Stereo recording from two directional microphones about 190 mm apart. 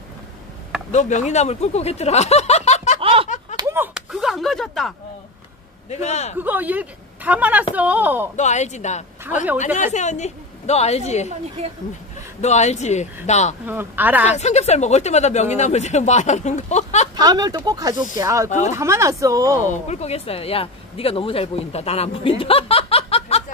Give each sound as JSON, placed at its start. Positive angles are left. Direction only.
{"t": 0.9, "sound": "speech", "side_deg": 40}
{"t": 3.0, "sound": "a sound", "side_deg": -30}
{"t": 3.5, "sound": "a sound", "side_deg": -15}
{"t": 5.9, "sound": "speech", "side_deg": 35}
{"t": 6.3, "sound": "speech", "side_deg": -10}
{"t": 8.4, "sound": "speech", "side_deg": 40}
{"t": 11.2, "sound": "a woman's voice", "side_deg": -35}
{"t": 12.4, "sound": "speech", "side_deg": 35}
{"t": 13.7, "sound": "speech", "side_deg": -10}
{"t": 14.3, "sound": "speech", "side_deg": 35}
{"t": 17.1, "sound": "speech", "side_deg": -20}
{"t": 19.6, "sound": "speech", "side_deg": 40}